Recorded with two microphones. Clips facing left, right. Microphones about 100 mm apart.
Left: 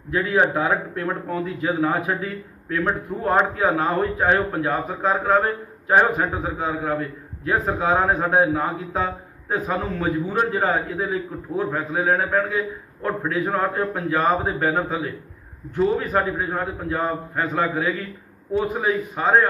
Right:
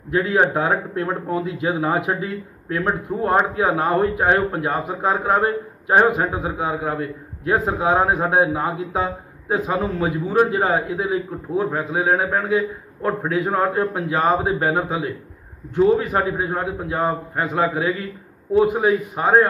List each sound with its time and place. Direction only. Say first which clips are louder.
0.1 s a man's voice: right 2 dB; 20° right (ahead or behind)